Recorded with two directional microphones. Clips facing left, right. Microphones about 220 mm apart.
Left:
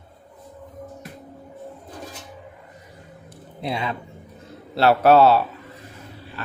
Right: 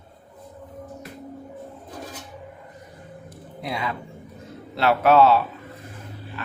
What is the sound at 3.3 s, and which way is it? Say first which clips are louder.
Music: left 3 dB; 25° left (ahead or behind).